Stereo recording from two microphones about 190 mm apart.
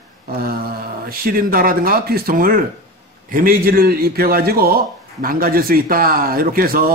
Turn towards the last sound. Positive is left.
turn(degrees=-50)  # may be behind; listen again after turning